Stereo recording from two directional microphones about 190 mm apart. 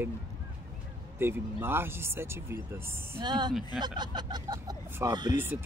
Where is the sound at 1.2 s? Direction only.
10° right (ahead or behind).